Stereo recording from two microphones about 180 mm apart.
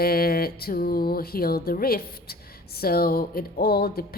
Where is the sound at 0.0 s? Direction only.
60° left (ahead or behind).